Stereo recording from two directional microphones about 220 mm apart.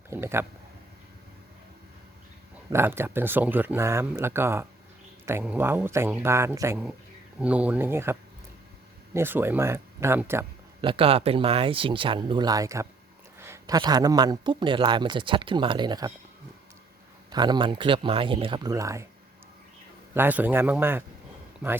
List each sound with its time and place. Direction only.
0.1 s speech: 10° right (ahead or behind)
2.7 s speech: 10° right (ahead or behind)
10.8 s a man's voice: 25° right (ahead or behind)
17.3 s a man's voice: 20° right (ahead or behind)
20.1 s speech: 10° right (ahead or behind)